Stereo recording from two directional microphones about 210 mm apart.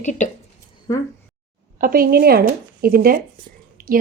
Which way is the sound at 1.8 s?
45° right (ahead or behind).